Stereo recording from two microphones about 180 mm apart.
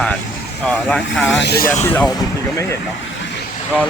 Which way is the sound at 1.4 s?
65° left (ahead or behind).